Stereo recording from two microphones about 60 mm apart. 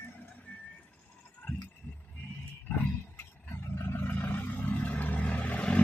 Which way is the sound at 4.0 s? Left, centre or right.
Left.